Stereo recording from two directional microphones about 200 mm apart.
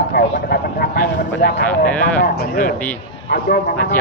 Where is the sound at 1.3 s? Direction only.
60° left (ahead or behind).